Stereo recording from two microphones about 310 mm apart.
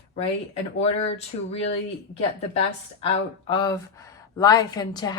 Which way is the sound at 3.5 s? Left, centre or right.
Centre.